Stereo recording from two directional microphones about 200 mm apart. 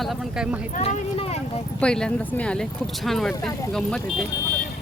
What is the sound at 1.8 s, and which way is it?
Speech, 5° left (ahead or behind).